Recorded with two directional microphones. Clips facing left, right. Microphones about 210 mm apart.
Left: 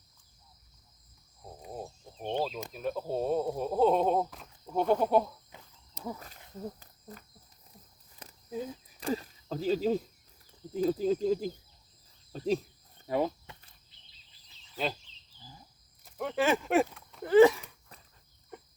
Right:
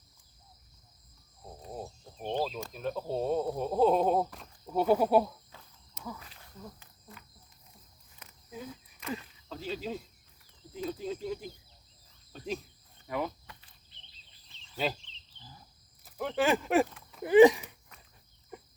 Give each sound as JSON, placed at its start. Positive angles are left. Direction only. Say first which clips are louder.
{"t": 1.6, "sound": "a sound", "louder": "even", "side_deg": 5}
{"t": 2.7, "sound": "speech", "louder": "left 1 dB", "side_deg": 5}
{"t": 5.9, "sound": "speech", "louder": "left 4 dB", "side_deg": 35}
{"t": 8.2, "sound": "a sound", "louder": "left 6 dB", "side_deg": 35}
{"t": 9.0, "sound": "speech", "louder": "left 6 dB", "side_deg": 35}
{"t": 13.1, "sound": "cricket", "louder": "left 5 dB", "side_deg": 30}
{"t": 14.8, "sound": "speech", "louder": "right 1 dB", "side_deg": -5}
{"t": 16.0, "sound": "speech", "louder": "even", "side_deg": 0}
{"t": 17.2, "sound": "speech", "louder": "right 1 dB", "side_deg": -15}
{"t": 18.5, "sound": "a sound", "louder": "right 1 dB", "side_deg": -5}